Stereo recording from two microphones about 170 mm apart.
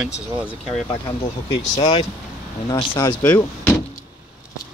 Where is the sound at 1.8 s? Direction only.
40° left (ahead or behind).